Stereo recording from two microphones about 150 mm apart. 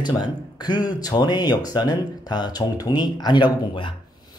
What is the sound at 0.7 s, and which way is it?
A man's voice, 30° left (ahead or behind).